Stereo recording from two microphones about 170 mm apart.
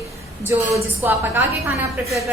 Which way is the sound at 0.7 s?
15° right (ahead or behind).